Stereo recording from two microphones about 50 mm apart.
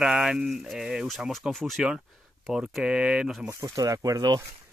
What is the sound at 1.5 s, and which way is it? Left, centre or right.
Speech, centre.